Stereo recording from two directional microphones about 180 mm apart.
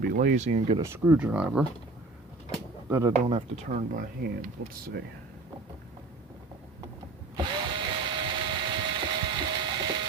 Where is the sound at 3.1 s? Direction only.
35° right (ahead or behind).